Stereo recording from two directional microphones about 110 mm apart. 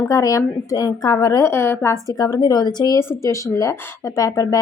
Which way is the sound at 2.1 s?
35° left (ahead or behind).